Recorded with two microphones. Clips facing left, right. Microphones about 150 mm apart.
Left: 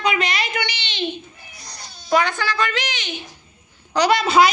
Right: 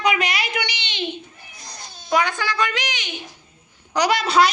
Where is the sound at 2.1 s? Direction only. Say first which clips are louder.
Left 2 dB; 10° right (ahead or behind).